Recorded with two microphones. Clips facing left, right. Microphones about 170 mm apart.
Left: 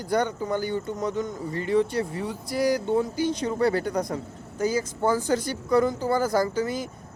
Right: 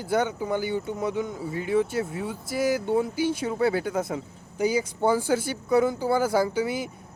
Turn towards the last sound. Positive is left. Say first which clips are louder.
# even
turn(degrees=-10)  # may be behind; listen again after turning